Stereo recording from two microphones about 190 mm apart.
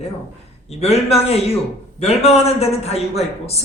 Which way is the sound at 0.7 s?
35° left (ahead or behind).